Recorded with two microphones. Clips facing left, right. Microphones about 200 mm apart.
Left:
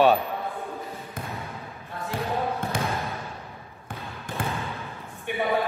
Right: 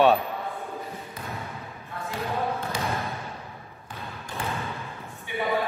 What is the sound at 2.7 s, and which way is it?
Basketball bounce, 55° left (ahead or behind).